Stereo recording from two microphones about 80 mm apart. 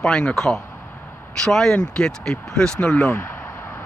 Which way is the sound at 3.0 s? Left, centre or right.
Left.